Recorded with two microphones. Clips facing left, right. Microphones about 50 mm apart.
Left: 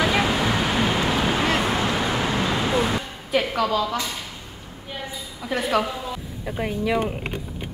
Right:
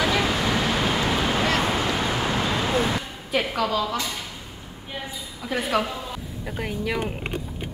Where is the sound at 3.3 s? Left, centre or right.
Centre.